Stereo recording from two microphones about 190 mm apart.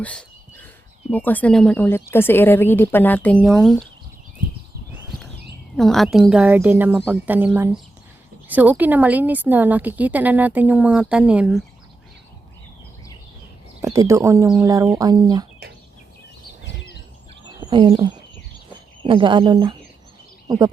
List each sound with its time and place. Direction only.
0.0 s whispering: 5° left (ahead or behind)
1.1 s speech: 10° left (ahead or behind)
5.7 s a woman's voice: centre (ahead or behind)
13.8 s a woman's voice: 15° right (ahead or behind)
17.6 s speech: 25° right (ahead or behind)